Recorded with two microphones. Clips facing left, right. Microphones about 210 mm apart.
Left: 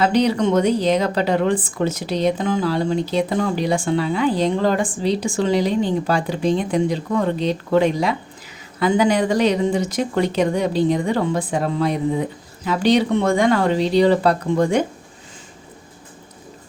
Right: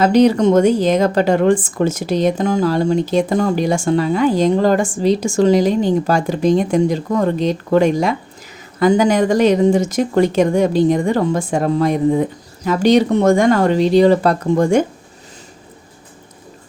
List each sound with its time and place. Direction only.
0.0 s a woman's voice: 45° right (ahead or behind)